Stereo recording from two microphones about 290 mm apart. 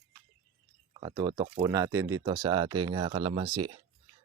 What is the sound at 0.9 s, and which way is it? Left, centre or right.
Speech, centre.